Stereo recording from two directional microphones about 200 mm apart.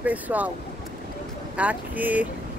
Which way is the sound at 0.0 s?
10° right (ahead or behind).